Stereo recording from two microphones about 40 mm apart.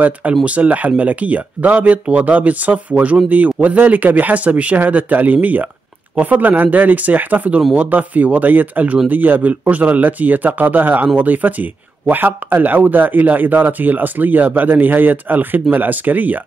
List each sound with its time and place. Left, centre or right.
0.5 s speech: right